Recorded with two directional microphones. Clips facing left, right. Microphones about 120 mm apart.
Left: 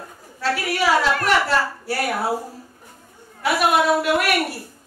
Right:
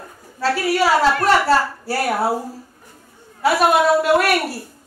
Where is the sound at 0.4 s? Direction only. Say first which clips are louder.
Right 4 dB; 35° right (ahead or behind).